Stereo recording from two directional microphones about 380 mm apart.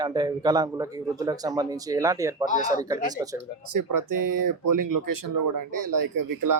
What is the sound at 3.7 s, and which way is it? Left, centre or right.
Speech, right.